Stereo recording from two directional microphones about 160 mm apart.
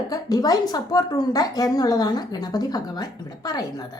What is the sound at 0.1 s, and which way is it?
A woman's voice, 25° left (ahead or behind).